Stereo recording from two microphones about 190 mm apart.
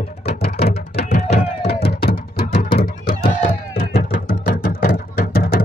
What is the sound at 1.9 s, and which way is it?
Music, 50° left (ahead or behind).